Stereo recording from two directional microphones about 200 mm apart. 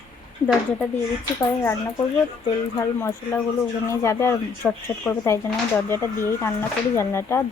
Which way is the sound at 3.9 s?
15° left (ahead or behind).